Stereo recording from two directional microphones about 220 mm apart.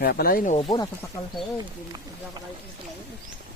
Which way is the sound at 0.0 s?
45° left (ahead or behind).